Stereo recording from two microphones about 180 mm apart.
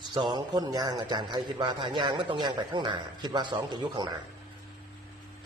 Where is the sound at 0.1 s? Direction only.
25° right (ahead or behind).